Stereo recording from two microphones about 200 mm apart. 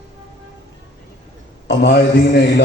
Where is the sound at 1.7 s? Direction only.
55° left (ahead or behind).